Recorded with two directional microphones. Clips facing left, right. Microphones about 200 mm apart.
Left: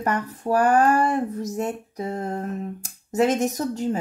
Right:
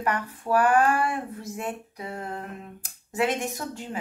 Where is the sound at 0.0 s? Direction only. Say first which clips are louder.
Left 3 dB; 40° left (ahead or behind).